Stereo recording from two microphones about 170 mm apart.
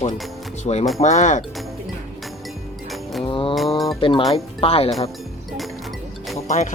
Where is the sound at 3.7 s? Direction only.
Centre (ahead or behind).